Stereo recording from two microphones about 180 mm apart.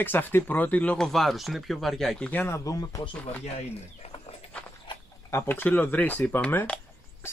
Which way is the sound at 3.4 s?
35° left (ahead or behind).